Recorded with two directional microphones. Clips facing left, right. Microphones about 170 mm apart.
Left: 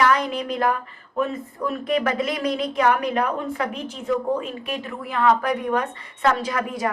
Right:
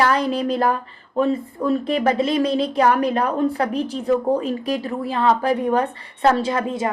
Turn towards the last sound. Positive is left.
turn(degrees=-25)  # may be behind; listen again after turning